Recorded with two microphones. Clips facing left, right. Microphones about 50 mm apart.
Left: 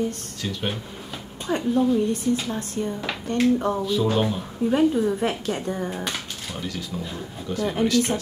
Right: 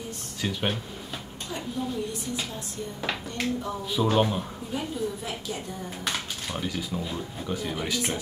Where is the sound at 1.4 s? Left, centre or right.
Left.